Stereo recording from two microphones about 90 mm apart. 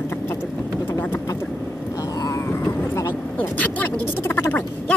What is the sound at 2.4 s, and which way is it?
Vehicle, 25° left (ahead or behind).